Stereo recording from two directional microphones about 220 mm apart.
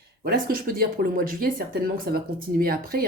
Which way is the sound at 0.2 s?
40° right (ahead or behind).